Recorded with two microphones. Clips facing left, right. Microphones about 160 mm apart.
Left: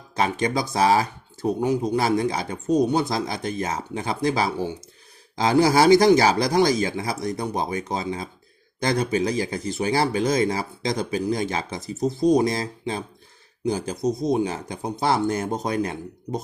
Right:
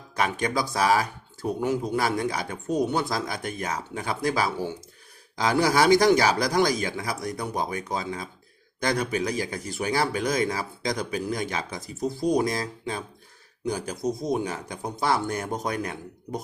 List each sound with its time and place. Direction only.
0.2 s speech: 25° left (ahead or behind)